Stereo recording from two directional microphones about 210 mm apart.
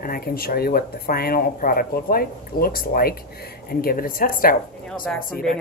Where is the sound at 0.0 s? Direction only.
45° left (ahead or behind).